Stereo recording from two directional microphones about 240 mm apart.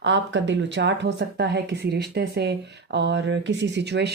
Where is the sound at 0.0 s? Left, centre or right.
Right.